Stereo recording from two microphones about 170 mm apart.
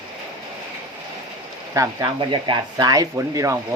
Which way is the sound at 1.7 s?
20° right (ahead or behind).